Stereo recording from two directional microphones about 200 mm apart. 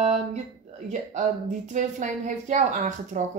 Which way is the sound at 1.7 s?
40° right (ahead or behind).